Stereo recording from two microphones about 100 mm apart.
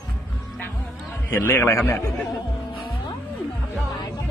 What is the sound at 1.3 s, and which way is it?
Speech, 20° left (ahead or behind).